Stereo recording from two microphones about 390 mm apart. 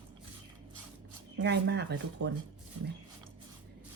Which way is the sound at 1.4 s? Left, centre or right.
Right.